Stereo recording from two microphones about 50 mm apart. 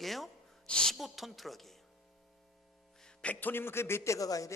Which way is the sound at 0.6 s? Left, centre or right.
Centre.